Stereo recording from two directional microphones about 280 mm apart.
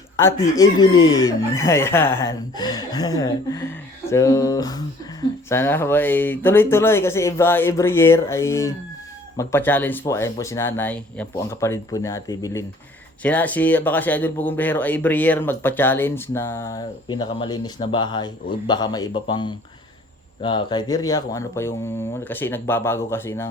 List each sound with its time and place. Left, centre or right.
0.2 s speech: centre